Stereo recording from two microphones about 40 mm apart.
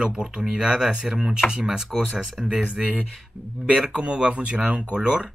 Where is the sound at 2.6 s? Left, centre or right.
Right.